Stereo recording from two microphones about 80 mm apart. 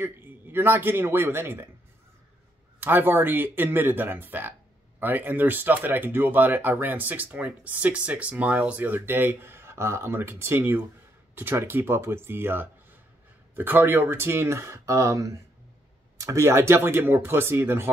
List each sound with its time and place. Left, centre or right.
0.0 s a man's voice: right
2.8 s speech: right